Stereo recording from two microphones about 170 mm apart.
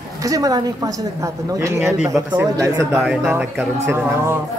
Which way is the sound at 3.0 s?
Centre (ahead or behind).